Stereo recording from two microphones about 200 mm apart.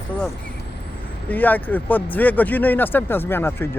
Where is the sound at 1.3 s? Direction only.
10° left (ahead or behind).